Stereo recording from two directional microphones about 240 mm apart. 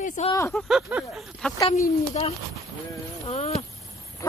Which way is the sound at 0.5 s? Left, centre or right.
Centre.